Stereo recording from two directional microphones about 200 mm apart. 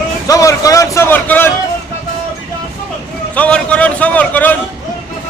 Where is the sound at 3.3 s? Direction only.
5° left (ahead or behind).